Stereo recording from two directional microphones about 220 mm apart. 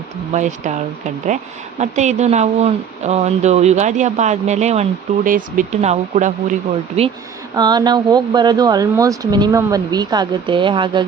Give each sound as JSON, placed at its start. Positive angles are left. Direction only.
{"t": 0.3, "sound": "speech", "side_deg": -35}
{"t": 1.8, "sound": "speech", "side_deg": -30}
{"t": 7.5, "sound": "speech", "side_deg": -20}